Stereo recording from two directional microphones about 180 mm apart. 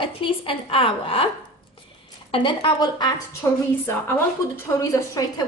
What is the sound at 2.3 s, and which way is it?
A woman's voice, 25° left (ahead or behind).